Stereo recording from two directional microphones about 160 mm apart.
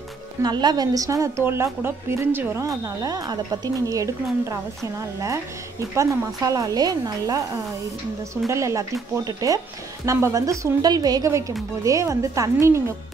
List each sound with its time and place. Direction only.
0.4 s a woman's voice: 25° right (ahead or behind)
8.5 s a woman's voice: 20° right (ahead or behind)